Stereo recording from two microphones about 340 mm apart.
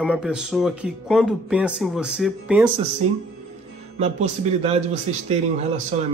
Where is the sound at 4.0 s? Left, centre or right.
Centre.